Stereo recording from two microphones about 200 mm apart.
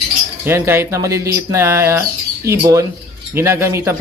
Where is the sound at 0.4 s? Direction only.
10° right (ahead or behind).